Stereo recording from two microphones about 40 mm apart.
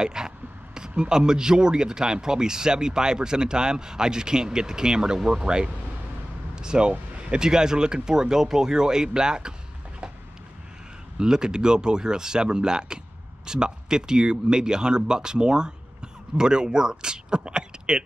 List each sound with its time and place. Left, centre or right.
0.0 s speech: centre
11.1 s speech: centre